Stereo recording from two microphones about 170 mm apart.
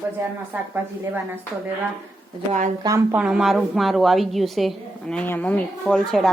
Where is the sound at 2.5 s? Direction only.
45° right (ahead or behind).